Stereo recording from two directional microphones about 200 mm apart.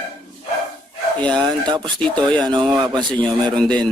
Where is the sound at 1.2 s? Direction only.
5° left (ahead or behind).